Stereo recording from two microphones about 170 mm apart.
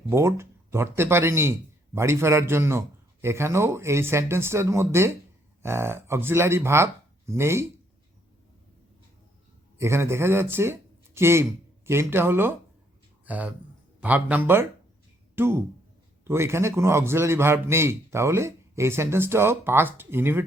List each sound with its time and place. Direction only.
0.1 s a man's voice: 15° right (ahead or behind)
9.7 s a man's voice: 15° right (ahead or behind)